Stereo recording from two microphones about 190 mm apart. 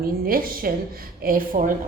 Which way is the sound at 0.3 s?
50° right (ahead or behind).